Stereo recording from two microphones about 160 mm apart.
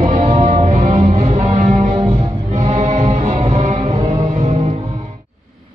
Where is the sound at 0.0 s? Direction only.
40° right (ahead or behind).